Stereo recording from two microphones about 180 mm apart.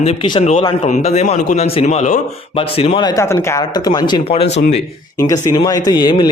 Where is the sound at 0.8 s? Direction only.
40° left (ahead or behind); by 4.2 s 20° left (ahead or behind).